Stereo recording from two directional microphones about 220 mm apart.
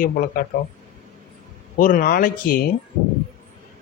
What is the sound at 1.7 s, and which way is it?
Speech, 40° left (ahead or behind).